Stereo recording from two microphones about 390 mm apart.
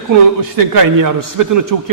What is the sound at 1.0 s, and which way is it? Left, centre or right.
Speech, right.